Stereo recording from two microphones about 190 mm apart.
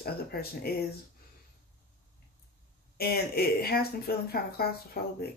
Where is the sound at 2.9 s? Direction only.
55° left (ahead or behind).